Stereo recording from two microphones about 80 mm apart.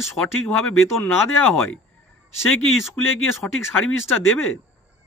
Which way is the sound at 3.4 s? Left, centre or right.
Left.